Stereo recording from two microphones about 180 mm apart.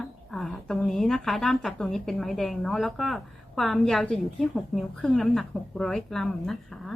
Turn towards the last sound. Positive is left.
turn(degrees=5)  # may be behind; listen again after turning